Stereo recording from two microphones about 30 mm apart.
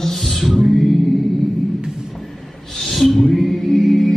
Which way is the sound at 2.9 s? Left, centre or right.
Centre.